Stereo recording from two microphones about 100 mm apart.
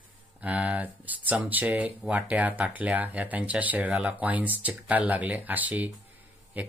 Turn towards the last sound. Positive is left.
turn(degrees=-15)  # may be behind; listen again after turning